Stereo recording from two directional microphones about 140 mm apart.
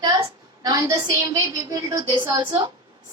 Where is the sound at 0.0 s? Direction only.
30° right (ahead or behind).